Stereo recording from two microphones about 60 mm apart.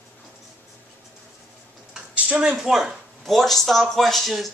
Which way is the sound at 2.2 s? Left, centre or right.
Centre.